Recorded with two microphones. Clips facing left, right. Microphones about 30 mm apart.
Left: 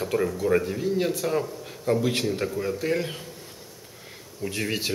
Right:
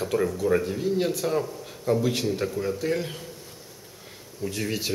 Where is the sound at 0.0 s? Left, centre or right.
Centre.